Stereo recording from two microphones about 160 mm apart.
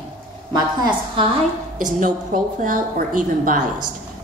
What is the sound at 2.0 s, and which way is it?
A woman's voice, 60° right (ahead or behind).